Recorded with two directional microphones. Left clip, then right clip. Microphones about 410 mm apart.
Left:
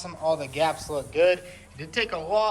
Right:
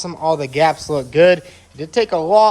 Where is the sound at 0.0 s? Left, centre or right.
Centre.